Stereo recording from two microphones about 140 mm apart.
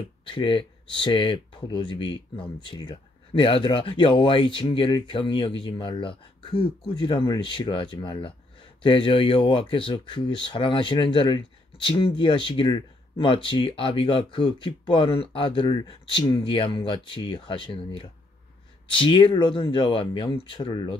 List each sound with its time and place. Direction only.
0.3 s speech: 35° left (ahead or behind)